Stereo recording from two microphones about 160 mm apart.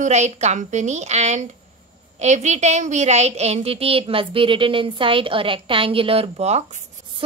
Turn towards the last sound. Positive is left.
turn(degrees=-40)  # may be behind; listen again after turning